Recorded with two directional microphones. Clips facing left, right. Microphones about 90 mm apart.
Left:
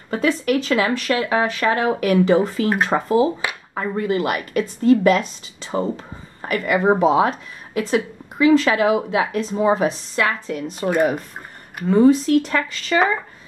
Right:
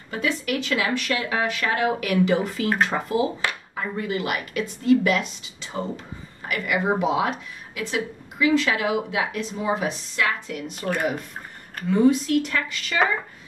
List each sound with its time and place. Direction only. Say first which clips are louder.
0.1 s speech: left 7 dB; 40° left (ahead or behind)